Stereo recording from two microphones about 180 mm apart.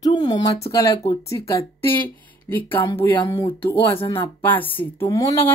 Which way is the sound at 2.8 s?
25° left (ahead or behind).